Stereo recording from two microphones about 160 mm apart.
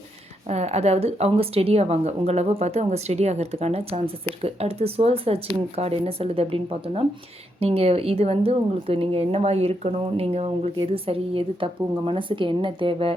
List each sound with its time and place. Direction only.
0.4 s a woman's voice: 45° right (ahead or behind)